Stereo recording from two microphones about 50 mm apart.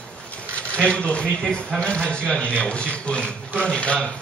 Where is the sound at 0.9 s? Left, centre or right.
Left.